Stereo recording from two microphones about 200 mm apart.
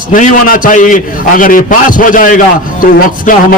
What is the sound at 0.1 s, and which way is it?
A man's voice, 45° left (ahead or behind).